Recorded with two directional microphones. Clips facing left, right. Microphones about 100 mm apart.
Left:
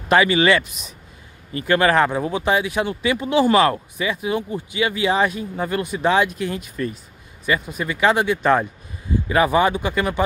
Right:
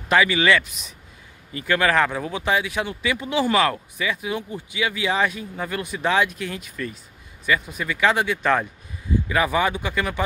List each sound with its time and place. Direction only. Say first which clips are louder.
0.1 s speech: left 3 dB; 40° left (ahead or behind); by 8.6 s 25° left (ahead or behind)
9.3 s speech: left 5 dB; 40° left (ahead or behind)